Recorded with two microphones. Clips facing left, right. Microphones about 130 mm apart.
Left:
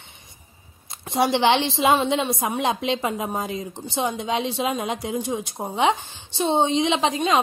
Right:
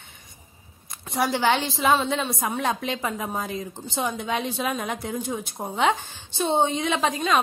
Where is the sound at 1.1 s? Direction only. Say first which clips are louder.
Left 3 dB; 25° left (ahead or behind).